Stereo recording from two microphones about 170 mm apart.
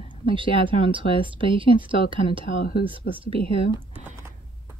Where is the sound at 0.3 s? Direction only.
30° right (ahead or behind).